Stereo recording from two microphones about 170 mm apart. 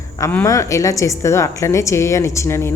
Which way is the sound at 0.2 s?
15° left (ahead or behind).